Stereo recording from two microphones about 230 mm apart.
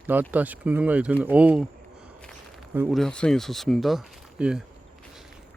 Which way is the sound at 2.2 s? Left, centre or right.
Centre.